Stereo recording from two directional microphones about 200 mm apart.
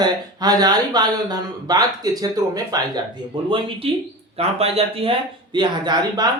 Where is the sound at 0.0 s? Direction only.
20° right (ahead or behind).